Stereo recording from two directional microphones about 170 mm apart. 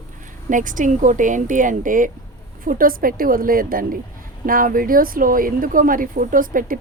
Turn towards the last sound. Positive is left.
turn(degrees=-55)  # may be behind; listen again after turning